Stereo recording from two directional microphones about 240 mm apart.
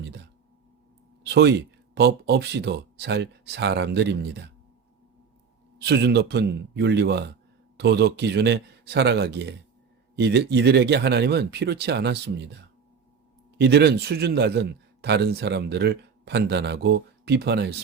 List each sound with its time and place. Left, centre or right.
1.2 s speech: right
5.8 s a man's voice: right
13.6 s a man's voice: right